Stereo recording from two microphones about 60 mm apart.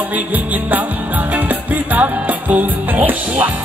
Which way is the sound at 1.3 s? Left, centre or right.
Right.